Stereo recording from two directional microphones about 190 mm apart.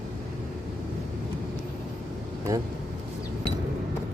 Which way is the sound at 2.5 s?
15° right (ahead or behind).